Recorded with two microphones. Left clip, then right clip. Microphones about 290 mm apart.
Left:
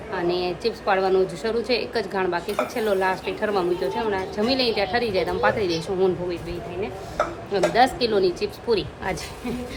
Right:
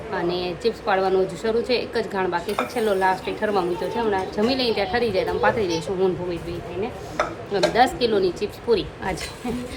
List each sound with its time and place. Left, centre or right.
0.1 s a woman's voice: centre
7.5 s a woman's voice: centre